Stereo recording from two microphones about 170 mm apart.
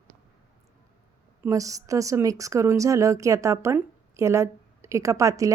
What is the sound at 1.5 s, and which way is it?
A woman's voice, 20° right (ahead or behind).